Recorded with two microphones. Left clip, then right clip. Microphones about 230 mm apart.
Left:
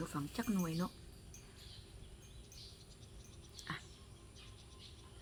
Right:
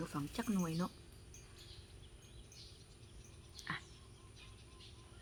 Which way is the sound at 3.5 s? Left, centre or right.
Centre.